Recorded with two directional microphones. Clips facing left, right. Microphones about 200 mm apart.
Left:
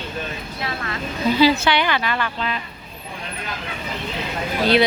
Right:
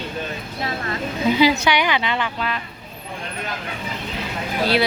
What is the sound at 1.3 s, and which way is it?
A woman's voice, 15° right (ahead or behind).